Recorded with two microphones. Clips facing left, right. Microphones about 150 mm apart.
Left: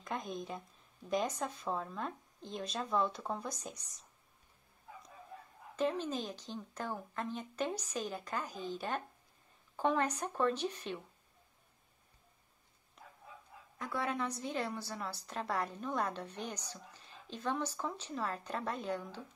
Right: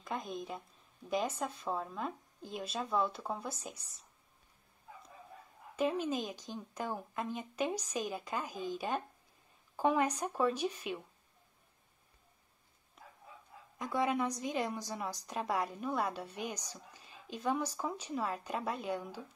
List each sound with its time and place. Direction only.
0.0 s a woman's voice: centre (ahead or behind)
5.8 s a woman's voice: 10° right (ahead or behind)
13.0 s a sound: centre (ahead or behind)
13.7 s a woman's voice: 15° right (ahead or behind)